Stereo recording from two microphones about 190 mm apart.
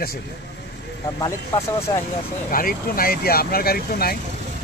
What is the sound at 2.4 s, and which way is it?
Speech, 50° left (ahead or behind).